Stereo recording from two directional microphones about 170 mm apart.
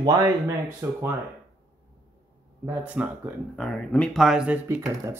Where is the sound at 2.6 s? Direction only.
10° right (ahead or behind).